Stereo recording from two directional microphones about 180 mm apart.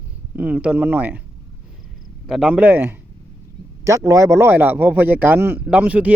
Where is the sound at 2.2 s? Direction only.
Centre (ahead or behind).